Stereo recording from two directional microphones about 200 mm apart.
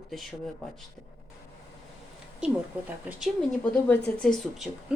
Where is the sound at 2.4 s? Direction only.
5° right (ahead or behind).